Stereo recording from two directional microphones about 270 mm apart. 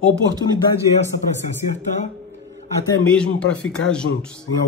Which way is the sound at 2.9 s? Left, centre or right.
Centre.